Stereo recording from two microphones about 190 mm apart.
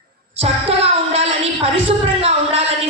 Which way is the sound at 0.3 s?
30° right (ahead or behind).